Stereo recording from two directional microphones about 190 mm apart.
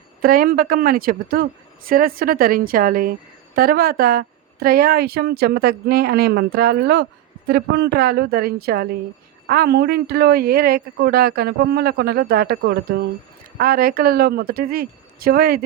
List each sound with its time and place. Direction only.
0.2 s a woman's voice: 50° right (ahead or behind)